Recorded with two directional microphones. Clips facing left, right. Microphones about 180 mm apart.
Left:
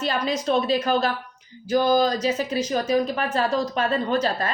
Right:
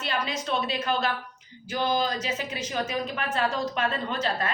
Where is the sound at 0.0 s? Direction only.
40° left (ahead or behind).